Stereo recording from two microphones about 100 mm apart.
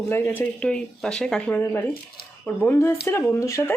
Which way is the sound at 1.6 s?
20° left (ahead or behind).